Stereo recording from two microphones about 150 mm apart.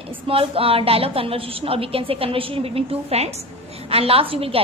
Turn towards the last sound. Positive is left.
turn(degrees=-40)  # may be behind; listen again after turning